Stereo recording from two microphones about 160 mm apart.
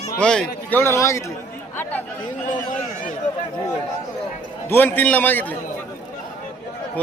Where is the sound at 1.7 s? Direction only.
10° left (ahead or behind).